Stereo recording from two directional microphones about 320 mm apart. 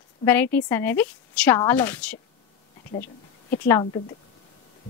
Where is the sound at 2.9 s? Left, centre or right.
Left.